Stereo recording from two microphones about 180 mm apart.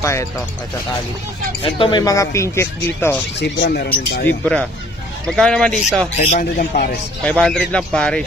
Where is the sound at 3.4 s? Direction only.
65° left (ahead or behind).